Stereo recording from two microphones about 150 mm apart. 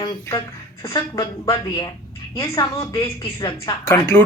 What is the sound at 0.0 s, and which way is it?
A woman's voice, 25° left (ahead or behind).